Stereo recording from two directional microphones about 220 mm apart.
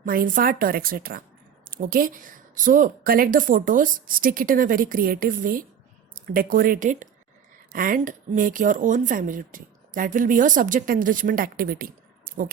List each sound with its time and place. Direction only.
0.0 s speech: 40° right (ahead or behind)